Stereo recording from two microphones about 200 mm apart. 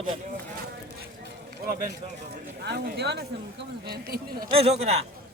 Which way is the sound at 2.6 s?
55° right (ahead or behind).